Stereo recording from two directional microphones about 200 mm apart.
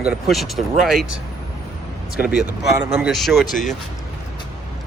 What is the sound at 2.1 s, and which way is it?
Speech, 5° right (ahead or behind).